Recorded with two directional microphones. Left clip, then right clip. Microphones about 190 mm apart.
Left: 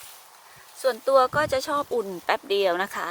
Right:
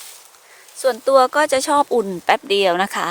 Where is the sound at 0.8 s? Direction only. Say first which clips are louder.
Right 6 dB; 25° right (ahead or behind).